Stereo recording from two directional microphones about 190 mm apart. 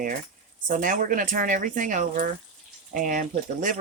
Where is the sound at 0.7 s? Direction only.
45° right (ahead or behind).